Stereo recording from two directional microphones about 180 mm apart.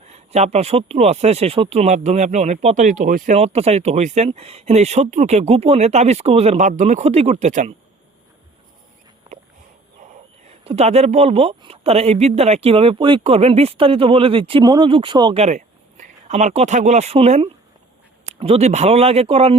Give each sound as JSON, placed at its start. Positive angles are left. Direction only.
{"t": 0.0, "sound": "speech", "side_deg": -35}
{"t": 10.6, "sound": "speech", "side_deg": -35}